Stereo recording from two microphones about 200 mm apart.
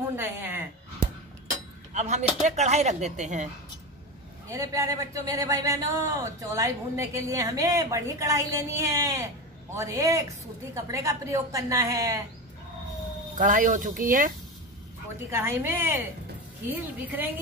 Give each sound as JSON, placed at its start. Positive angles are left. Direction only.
{"t": 0.1, "sound": "a sound", "side_deg": -10}
{"t": 2.0, "sound": "speech", "side_deg": -35}
{"t": 4.5, "sound": "a man's voice", "side_deg": -15}
{"t": 13.4, "sound": "speech", "side_deg": -45}
{"t": 15.1, "sound": "a man's voice", "side_deg": -10}